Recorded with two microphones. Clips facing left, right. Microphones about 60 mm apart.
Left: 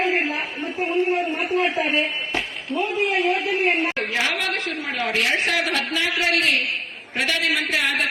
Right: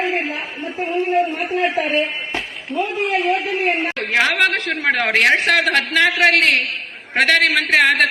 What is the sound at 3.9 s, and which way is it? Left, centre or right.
A woman's voice, right.